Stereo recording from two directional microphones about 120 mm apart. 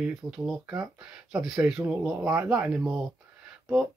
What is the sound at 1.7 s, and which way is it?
Speech, 15° right (ahead or behind).